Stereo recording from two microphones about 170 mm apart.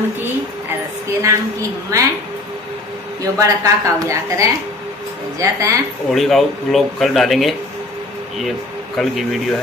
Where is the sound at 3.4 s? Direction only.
20° right (ahead or behind).